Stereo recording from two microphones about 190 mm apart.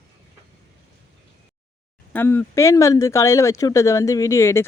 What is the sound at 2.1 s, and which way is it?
Speech, 10° left (ahead or behind).